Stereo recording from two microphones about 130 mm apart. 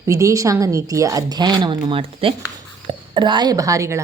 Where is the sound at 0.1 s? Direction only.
25° right (ahead or behind).